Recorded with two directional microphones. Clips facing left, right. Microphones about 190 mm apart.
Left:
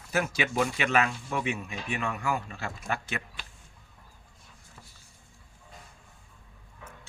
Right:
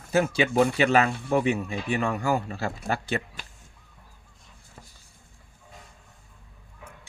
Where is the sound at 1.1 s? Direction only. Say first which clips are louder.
Right 7 dB; 60° right (ahead or behind).